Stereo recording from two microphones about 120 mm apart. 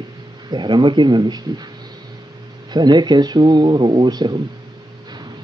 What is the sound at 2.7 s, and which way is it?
Speech, 35° right (ahead or behind).